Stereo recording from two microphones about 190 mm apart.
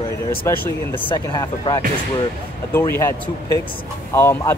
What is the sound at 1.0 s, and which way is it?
Speech, 25° left (ahead or behind).